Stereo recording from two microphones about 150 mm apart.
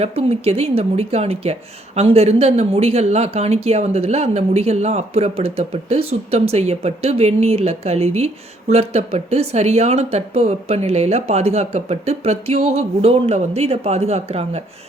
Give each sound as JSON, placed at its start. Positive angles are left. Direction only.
{"t": 0.0, "sound": "speech", "side_deg": -40}